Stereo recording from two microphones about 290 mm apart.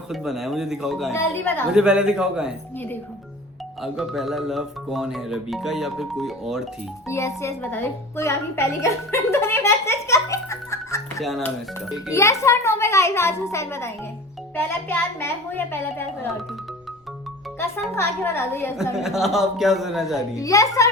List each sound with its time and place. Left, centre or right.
0.1 s speech: centre
1.7 s speech: centre
7.1 s a woman's voice: centre
12.1 s a woman's voice: centre
17.6 s speech: centre
20.1 s a woman's voice: centre